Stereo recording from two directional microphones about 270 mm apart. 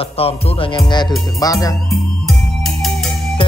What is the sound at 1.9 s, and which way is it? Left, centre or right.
Music, centre.